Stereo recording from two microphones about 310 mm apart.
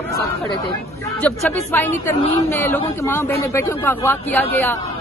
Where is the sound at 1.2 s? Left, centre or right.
Centre.